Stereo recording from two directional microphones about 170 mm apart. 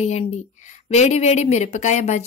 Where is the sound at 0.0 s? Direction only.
40° left (ahead or behind).